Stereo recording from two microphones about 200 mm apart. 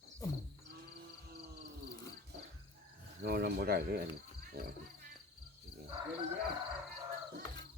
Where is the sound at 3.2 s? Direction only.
50° right (ahead or behind).